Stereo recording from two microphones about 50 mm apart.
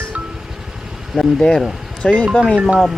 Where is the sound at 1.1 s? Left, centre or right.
Centre.